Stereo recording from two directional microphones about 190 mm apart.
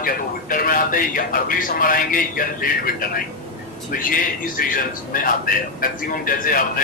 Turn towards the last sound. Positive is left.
turn(degrees=50)  # may be behind; listen again after turning